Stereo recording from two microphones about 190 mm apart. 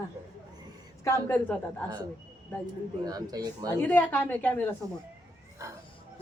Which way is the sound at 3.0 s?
20° right (ahead or behind).